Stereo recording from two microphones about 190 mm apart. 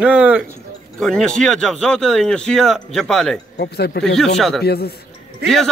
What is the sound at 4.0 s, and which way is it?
Speech, centre (ahead or behind).